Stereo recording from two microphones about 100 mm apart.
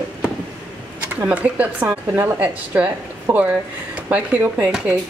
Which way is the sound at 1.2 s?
15° right (ahead or behind).